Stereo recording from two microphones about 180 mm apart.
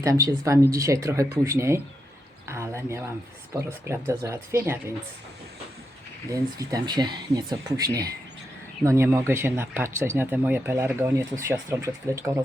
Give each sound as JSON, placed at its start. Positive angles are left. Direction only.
{"t": 0.0, "sound": "speech", "side_deg": -20}
{"t": 6.3, "sound": "speech", "side_deg": -20}